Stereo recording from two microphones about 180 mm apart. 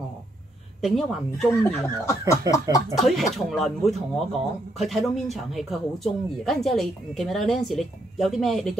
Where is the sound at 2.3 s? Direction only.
20° left (ahead or behind).